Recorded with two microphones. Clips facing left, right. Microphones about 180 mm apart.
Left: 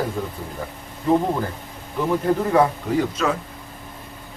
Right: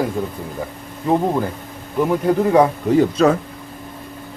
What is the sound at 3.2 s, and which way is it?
Speech, 35° right (ahead or behind).